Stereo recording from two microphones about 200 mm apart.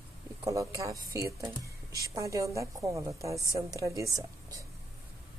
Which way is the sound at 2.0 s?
15° right (ahead or behind).